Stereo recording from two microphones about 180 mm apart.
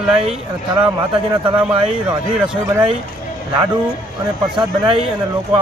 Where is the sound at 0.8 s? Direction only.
30° right (ahead or behind).